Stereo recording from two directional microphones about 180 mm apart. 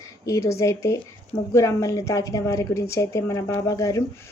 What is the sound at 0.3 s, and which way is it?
A woman's voice, 15° left (ahead or behind).